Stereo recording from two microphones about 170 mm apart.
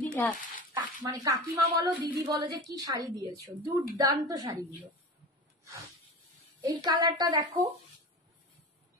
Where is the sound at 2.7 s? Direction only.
20° right (ahead or behind).